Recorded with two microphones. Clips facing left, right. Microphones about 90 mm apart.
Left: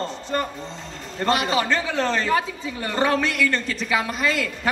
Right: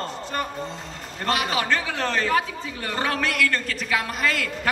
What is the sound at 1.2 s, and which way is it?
A man's voice, 20° left (ahead or behind).